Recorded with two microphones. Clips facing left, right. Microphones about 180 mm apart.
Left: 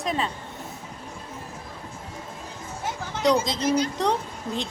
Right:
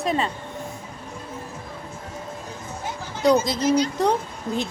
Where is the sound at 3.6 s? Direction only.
55° left (ahead or behind).